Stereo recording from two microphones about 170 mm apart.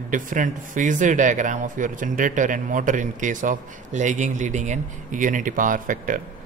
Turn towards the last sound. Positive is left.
turn(degrees=-50)  # may be behind; listen again after turning